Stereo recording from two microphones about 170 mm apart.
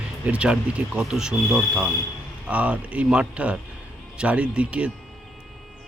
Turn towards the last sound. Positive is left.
turn(degrees=-5)  # may be behind; listen again after turning